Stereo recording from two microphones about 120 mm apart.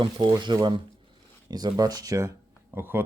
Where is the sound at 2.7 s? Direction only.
20° right (ahead or behind).